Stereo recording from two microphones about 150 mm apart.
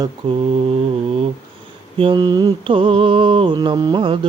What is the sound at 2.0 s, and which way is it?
Mantra, 30° right (ahead or behind).